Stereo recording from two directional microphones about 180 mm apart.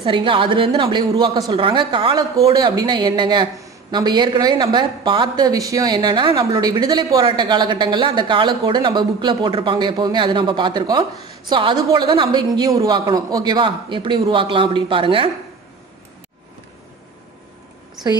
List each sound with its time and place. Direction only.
0.0 s a woman's voice: 30° right (ahead or behind)